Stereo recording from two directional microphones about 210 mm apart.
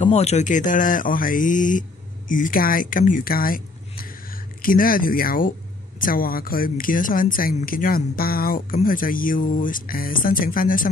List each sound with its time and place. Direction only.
0.0 s a woman's voice: 30° left (ahead or behind)